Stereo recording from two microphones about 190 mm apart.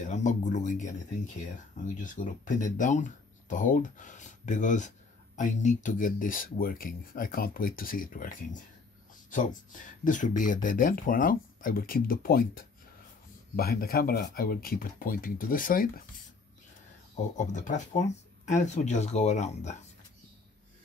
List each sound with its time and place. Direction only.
0.0 s speech: 40° left (ahead or behind)
17.4 s speech: 40° left (ahead or behind)